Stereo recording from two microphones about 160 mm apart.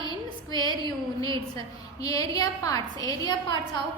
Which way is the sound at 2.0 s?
20° left (ahead or behind).